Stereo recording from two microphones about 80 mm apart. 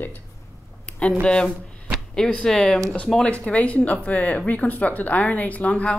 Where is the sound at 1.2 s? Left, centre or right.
Centre.